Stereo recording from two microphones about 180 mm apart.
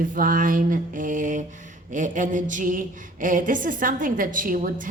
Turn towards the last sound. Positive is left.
turn(degrees=-50)  # may be behind; listen again after turning